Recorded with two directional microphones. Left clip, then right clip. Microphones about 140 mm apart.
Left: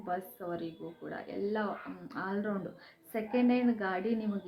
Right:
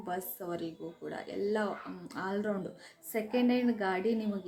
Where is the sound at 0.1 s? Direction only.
15° right (ahead or behind).